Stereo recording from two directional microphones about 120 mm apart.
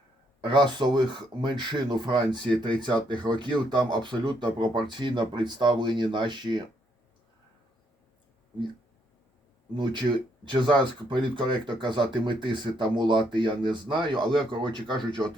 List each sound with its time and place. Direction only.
0.4 s speech: 40° right (ahead or behind)
9.7 s speech: 40° right (ahead or behind)